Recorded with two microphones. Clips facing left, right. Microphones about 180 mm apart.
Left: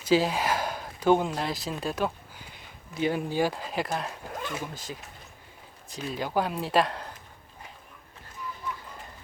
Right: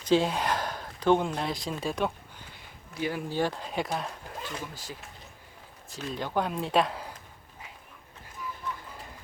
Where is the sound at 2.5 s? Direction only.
25° left (ahead or behind).